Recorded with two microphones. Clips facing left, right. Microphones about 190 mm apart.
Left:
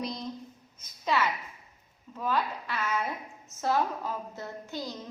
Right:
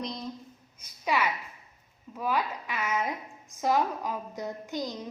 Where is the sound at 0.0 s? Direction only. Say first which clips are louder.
Left 1 dB; centre (ahead or behind).